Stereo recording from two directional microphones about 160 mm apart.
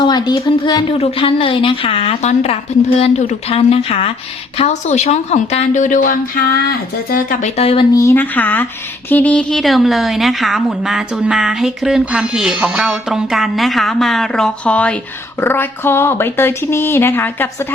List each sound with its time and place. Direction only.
0.0 s speech: 25° left (ahead or behind); by 7.5 s 60° left (ahead or behind)
7.5 s speech: 40° left (ahead or behind)
7.9 s speech: 15° left (ahead or behind)